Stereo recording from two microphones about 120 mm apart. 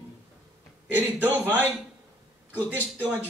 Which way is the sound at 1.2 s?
15° right (ahead or behind).